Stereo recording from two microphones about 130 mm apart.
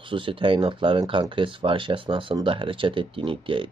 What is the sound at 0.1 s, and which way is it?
Speech, 40° right (ahead or behind).